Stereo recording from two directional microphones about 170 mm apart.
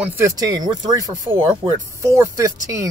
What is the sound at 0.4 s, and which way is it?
Speech, 20° right (ahead or behind).